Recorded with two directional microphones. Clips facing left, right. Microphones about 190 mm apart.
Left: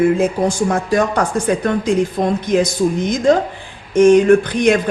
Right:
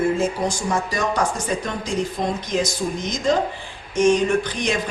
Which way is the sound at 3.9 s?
55° left (ahead or behind).